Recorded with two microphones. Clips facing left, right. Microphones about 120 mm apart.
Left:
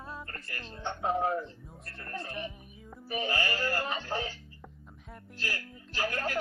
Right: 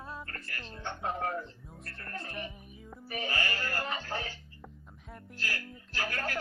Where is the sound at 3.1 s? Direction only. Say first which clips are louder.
Left 3 dB; 25° left (ahead or behind).